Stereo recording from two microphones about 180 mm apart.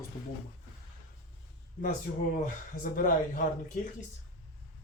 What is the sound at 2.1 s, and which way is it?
Speech, 55° left (ahead or behind).